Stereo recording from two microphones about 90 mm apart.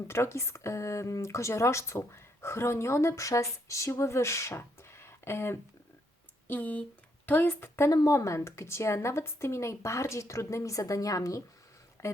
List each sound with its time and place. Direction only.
0.1 s speech: 30° left (ahead or behind)
6.5 s a woman's voice: 15° left (ahead or behind)
7.9 s speech: 40° left (ahead or behind)